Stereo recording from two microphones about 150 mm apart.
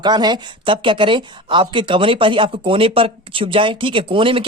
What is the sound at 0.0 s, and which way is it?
Speech, 30° right (ahead or behind).